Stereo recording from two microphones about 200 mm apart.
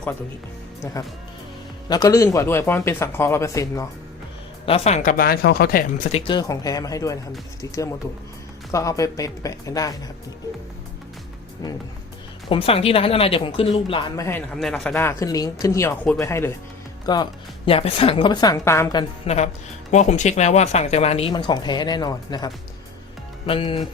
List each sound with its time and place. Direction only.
1.9 s speech: 15° left (ahead or behind)
4.6 s speech: 30° left (ahead or behind); by 6.1 s 45° left (ahead or behind)
6.1 s speech: 25° left (ahead or behind)
12.5 s a woman's voice: 30° left (ahead or behind)
14.3 s a woman's voice: 5° left (ahead or behind); by 23.8 s 25° left (ahead or behind)